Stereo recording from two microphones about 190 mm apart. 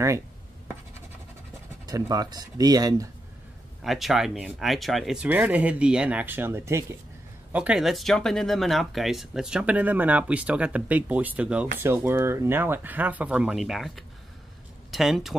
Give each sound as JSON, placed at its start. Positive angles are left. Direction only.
{"t": 1.9, "sound": "speech", "side_deg": -20}
{"t": 3.8, "sound": "speech", "side_deg": 0}